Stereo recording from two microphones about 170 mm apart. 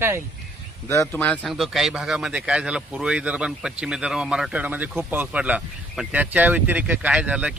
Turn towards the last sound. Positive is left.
turn(degrees=-5)  # may be behind; listen again after turning